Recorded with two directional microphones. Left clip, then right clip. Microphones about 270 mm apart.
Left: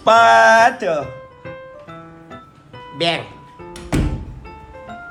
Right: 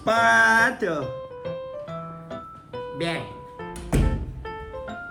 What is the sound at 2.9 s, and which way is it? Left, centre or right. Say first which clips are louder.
Speech: left 10 dB; centre.